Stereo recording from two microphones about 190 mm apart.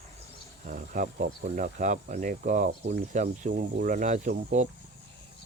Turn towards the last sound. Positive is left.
turn(degrees=-40)  # may be behind; listen again after turning